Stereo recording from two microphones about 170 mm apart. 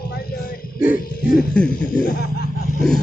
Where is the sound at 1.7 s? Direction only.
55° left (ahead or behind).